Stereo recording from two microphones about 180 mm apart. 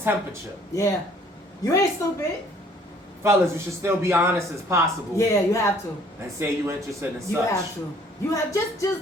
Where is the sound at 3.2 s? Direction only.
15° right (ahead or behind).